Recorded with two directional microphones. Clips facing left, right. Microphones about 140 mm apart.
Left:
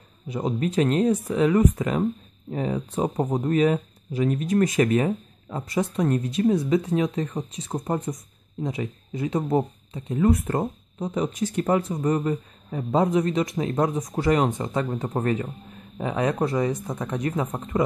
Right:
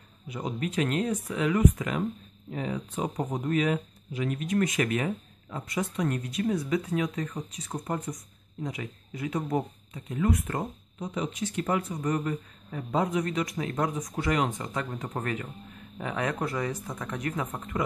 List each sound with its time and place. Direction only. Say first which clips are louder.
0.3 s speech: left 7 dB; 35° left (ahead or behind)